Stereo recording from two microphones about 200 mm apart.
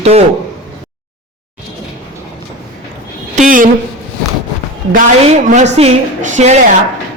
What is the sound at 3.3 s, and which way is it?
Speech, 40° right (ahead or behind).